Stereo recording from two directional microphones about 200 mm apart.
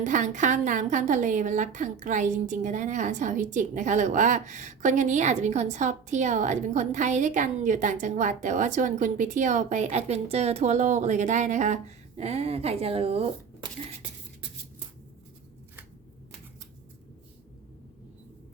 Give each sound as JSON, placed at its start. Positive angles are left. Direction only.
{"t": 0.0, "sound": "a woman's voice", "side_deg": -40}